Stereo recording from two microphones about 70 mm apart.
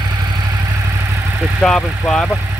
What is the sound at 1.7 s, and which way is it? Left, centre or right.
Speech, centre.